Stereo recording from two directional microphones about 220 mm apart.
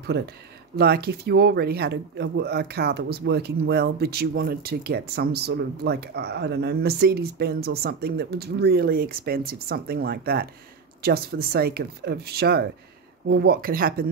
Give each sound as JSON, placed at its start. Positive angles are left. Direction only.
{"t": 0.1, "sound": "speech", "side_deg": -50}